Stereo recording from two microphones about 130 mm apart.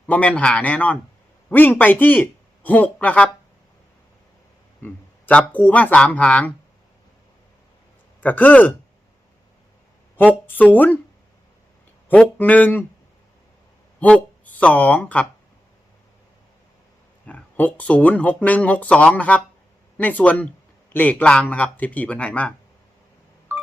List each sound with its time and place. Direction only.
0.1 s a man's voice: 10° left (ahead or behind)
4.8 s a sound: 10° left (ahead or behind)
5.5 s speech: 10° left (ahead or behind)
8.2 s speech: 10° left (ahead or behind)
10.5 s speech: 15° left (ahead or behind)
12.0 s speech: 10° left (ahead or behind)
14.0 s speech: 10° left (ahead or behind)
17.2 s speech: 10° left (ahead or behind)
23.5 s telephone dialing: 15° right (ahead or behind)